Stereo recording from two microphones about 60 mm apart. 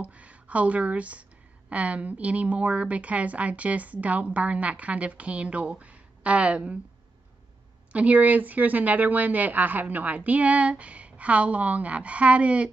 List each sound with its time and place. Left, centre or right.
0.0 s a woman's voice: right
7.9 s a woman's voice: right